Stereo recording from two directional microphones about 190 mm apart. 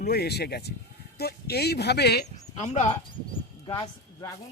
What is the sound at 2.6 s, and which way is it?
Speech, 35° left (ahead or behind).